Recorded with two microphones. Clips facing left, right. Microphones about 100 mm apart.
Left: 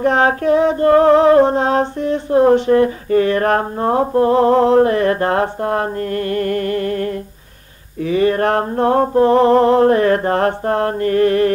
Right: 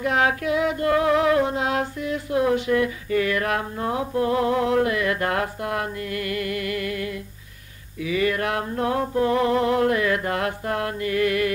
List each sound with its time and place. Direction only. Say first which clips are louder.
0.0 s female singing: left 7 dB; 35° left (ahead or behind)